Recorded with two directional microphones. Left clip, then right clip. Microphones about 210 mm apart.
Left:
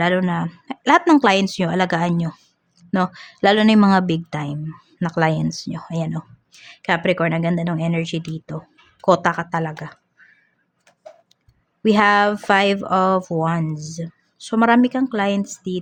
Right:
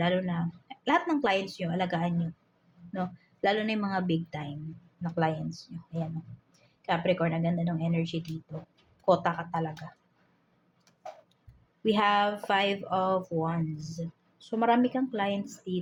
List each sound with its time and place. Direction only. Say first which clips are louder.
0.0 s speech: left 10 dB; 45° left (ahead or behind)
11.8 s speech: left 10 dB; 50° left (ahead or behind)